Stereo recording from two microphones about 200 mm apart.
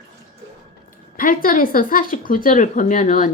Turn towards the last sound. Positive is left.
turn(degrees=40)  # may be behind; listen again after turning